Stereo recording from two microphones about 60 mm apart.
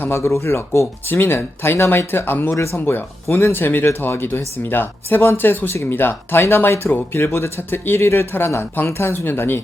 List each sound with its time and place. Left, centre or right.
0.2 s speech: left
1.0 s speech: left
6.9 s speech: left